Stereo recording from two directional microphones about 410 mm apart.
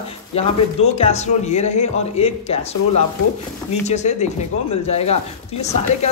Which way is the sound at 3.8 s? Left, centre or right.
Centre.